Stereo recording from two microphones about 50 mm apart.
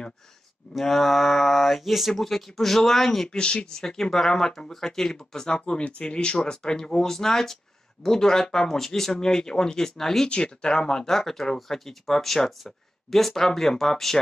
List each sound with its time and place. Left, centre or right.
0.7 s speech: centre
3.3 s speech: centre